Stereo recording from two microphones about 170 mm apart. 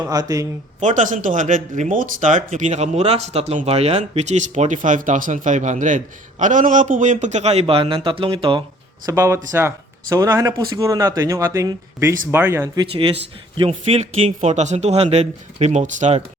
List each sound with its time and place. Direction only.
0.0 s speech: 20° right (ahead or behind)
0.8 s speech: 45° right (ahead or behind); by 8.6 s 30° right (ahead or behind)
9.0 s speech: 15° right (ahead or behind); by 16.2 s 45° right (ahead or behind)